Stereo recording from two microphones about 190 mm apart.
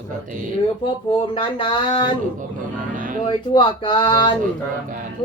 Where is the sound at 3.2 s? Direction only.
25° left (ahead or behind).